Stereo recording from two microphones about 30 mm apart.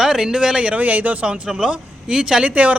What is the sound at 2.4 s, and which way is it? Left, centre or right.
Speech, right.